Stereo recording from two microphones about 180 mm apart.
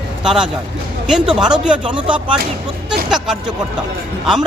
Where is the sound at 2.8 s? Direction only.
5° right (ahead or behind).